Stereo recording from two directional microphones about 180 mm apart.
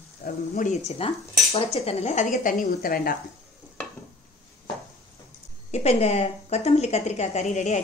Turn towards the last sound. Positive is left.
turn(degrees=40)  # may be behind; listen again after turning